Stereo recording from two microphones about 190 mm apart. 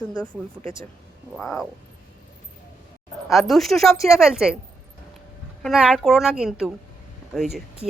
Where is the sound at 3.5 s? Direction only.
Centre (ahead or behind).